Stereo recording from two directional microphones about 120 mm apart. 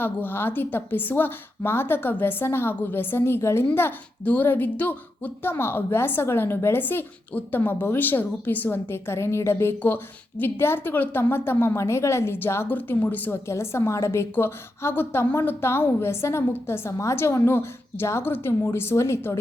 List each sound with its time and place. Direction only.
0.0 s a woman's voice: 15° left (ahead or behind)